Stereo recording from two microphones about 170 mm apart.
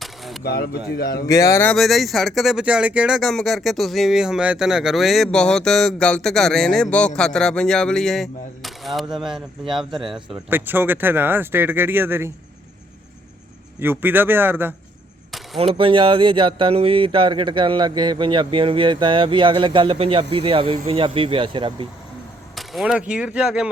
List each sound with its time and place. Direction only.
0.0 s a sound: centre (ahead or behind)
0.4 s speech: 65° left (ahead or behind)
1.3 s speech: 20° left (ahead or behind)
1.7 s speech: centre (ahead or behind)
10.5 s speech: 10° right (ahead or behind)
13.7 s speech: 15° right (ahead or behind)
15.5 s speech: 30° right (ahead or behind)
22.5 s speech: centre (ahead or behind)